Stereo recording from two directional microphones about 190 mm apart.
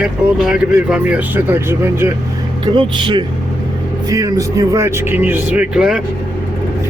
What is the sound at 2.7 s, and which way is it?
Speech, 25° right (ahead or behind).